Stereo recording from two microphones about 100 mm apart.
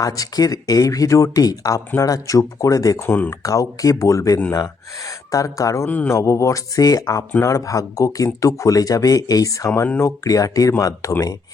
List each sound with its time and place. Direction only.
0.0 s speech: 35° left (ahead or behind)